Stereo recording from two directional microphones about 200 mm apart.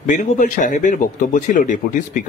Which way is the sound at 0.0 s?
40° left (ahead or behind).